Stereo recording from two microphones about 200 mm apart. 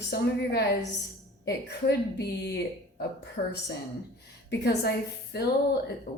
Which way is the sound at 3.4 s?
40° left (ahead or behind).